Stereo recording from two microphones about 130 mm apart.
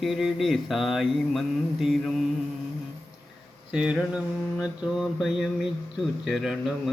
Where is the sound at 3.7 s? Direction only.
10° right (ahead or behind).